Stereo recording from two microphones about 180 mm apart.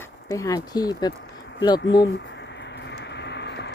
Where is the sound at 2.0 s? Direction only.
75° left (ahead or behind).